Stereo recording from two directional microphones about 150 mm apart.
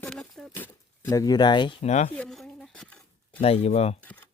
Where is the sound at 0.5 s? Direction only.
15° left (ahead or behind); by 1.8 s 30° left (ahead or behind).